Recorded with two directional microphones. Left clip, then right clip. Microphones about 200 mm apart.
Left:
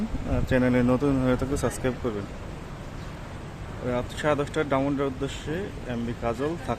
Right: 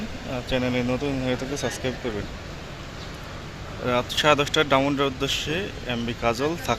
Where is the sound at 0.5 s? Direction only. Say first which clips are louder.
Left 2 dB; 25° left (ahead or behind).